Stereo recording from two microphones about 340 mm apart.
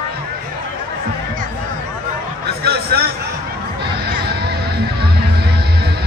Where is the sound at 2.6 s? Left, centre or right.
Right.